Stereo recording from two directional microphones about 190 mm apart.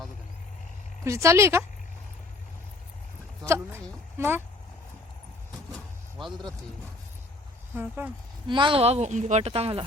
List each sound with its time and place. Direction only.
1.0 s a woman's voice: 15° right (ahead or behind)
3.4 s a woman's voice: 15° right (ahead or behind)
5.7 s vehicle: centre (ahead or behind)
7.8 s a woman's voice: 10° right (ahead or behind)
8.4 s speech: 25° right (ahead or behind)